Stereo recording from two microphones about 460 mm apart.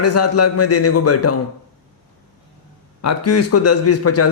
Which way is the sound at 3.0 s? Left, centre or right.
Left.